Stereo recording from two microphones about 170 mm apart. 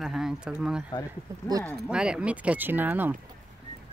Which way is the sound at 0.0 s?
Centre (ahead or behind).